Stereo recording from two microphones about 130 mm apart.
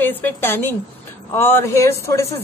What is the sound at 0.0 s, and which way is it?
A woman's voice, 15° left (ahead or behind).